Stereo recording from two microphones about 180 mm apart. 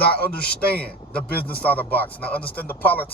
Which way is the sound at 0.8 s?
60° left (ahead or behind).